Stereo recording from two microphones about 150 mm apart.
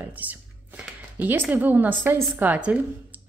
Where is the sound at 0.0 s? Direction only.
10° right (ahead or behind).